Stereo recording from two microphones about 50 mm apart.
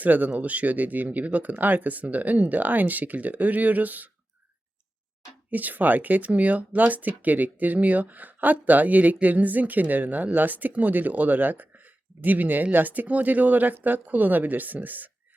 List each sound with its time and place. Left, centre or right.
0.0 s speech: right
5.5 s speech: right